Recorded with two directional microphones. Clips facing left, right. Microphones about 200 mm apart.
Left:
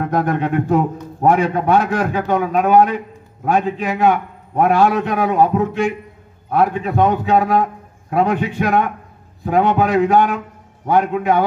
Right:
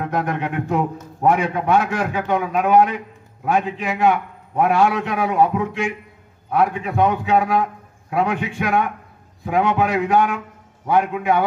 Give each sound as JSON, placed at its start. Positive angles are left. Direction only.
{"t": 0.1, "sound": "a man's voice", "side_deg": 35}